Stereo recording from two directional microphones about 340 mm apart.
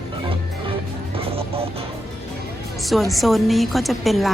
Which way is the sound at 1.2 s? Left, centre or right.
Centre.